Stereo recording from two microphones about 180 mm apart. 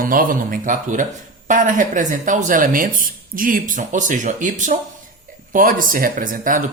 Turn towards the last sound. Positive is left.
turn(degrees=-50)  # may be behind; listen again after turning